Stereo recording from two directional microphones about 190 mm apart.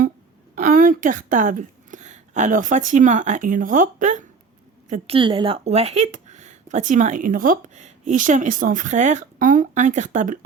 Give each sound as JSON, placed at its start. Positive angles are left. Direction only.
{"t": 0.5, "sound": "a woman's voice", "side_deg": -45}
{"t": 4.9, "sound": "speech", "side_deg": -30}